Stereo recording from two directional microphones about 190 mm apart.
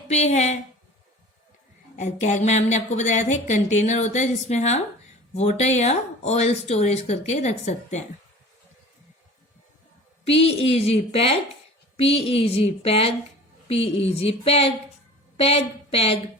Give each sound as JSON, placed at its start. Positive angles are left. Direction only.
{"t": 0.1, "sound": "a woman's voice", "side_deg": 35}
{"t": 2.0, "sound": "a woman's voice", "side_deg": 40}
{"t": 10.4, "sound": "a woman's voice", "side_deg": 30}
{"t": 14.2, "sound": "a woman's voice", "side_deg": 30}